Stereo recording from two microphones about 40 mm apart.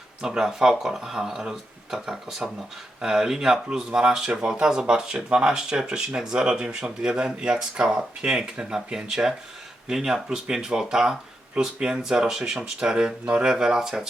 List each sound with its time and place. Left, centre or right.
0.2 s speech: centre